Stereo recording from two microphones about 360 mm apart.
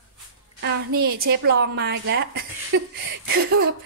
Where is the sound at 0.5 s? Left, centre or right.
Right.